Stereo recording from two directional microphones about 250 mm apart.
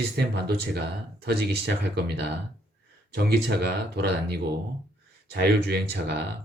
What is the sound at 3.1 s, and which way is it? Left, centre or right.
Speech, right.